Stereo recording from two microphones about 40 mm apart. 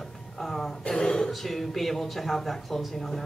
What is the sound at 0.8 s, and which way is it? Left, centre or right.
Speech, centre.